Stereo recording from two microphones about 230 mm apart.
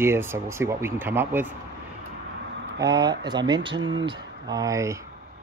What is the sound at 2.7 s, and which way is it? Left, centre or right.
Speech, centre.